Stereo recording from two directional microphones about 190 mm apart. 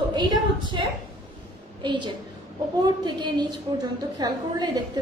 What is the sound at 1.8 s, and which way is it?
A woman's voice, 25° right (ahead or behind).